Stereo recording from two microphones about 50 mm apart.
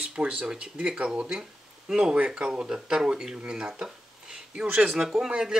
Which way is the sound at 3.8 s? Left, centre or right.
Centre.